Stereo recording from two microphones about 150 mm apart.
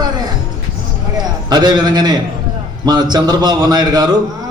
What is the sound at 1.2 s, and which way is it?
A man's voice, 30° right (ahead or behind).